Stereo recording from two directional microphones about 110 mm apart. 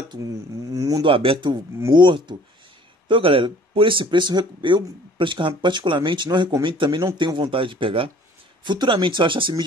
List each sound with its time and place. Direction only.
0.7 s a sound: 30° right (ahead or behind)
1.0 s speech: 55° right (ahead or behind)
3.1 s speech: 55° right (ahead or behind)